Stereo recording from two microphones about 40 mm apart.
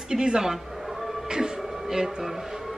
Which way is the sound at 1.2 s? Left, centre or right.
Centre.